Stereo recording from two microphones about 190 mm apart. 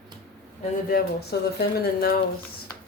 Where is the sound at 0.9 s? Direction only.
55° left (ahead or behind).